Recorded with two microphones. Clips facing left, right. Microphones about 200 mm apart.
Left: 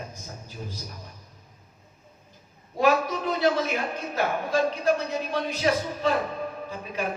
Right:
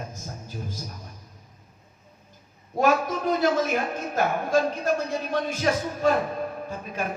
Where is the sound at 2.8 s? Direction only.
45° right (ahead or behind).